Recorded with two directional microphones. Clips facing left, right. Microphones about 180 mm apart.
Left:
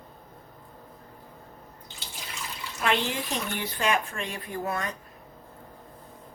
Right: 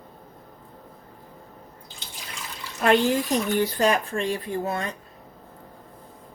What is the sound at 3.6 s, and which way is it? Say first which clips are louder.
Speech: right 6 dB; 40° right (ahead or behind).